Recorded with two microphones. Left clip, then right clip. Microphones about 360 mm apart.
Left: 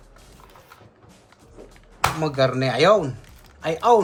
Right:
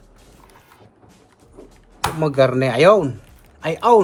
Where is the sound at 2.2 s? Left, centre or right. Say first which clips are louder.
Right 8 dB; right.